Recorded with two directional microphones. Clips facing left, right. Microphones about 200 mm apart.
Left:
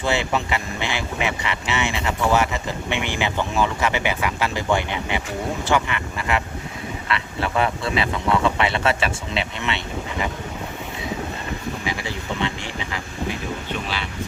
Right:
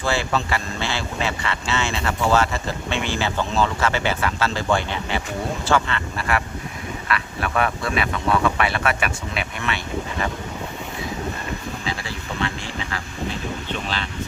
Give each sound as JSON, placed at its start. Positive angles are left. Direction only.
{"t": 0.0, "sound": "speech", "side_deg": 20}
{"t": 11.9, "sound": "speech", "side_deg": 20}